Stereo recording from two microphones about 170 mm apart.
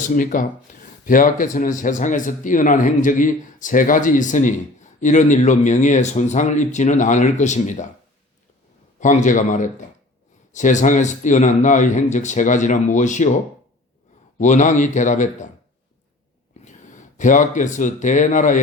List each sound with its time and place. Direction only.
0.1 s speech: 50° left (ahead or behind)
9.0 s speech: 45° left (ahead or behind)
14.3 s speech: 45° left (ahead or behind)
16.6 s speech: 45° left (ahead or behind)